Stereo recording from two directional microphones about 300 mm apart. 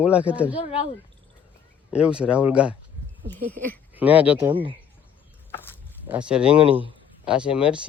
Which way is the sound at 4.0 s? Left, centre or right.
Centre.